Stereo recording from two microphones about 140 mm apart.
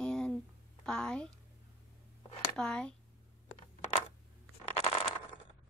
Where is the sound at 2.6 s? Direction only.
5° left (ahead or behind).